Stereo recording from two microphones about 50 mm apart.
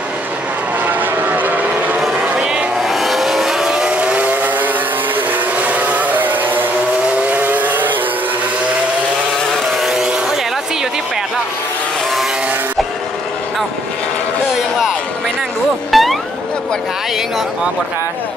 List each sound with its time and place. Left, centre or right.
0.8 s vehicle: right
2.3 s vehicle: centre
2.9 s vehicle: centre
4.0 s vehicle: right
5.7 s a sound: right
7.2 s vehicle: right
9.8 s vehicle: centre
15.9 s music: centre